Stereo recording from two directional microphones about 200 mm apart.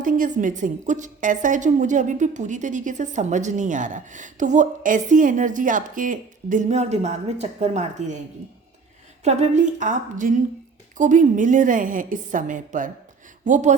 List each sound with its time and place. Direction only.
0.0 s a woman's voice: 40° right (ahead or behind)
9.2 s a woman's voice: 35° right (ahead or behind)